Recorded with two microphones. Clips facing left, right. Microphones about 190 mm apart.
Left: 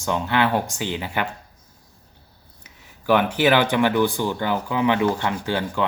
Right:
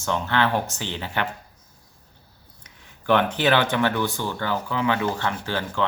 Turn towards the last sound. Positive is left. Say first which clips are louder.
# left 3 dB
turn(degrees=15)  # may be behind; listen again after turning